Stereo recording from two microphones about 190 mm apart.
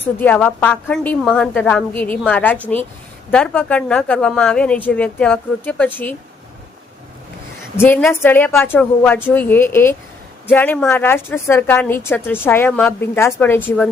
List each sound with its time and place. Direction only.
0.0 s a woman's voice: 10° left (ahead or behind)
7.8 s a woman's voice: 10° left (ahead or behind)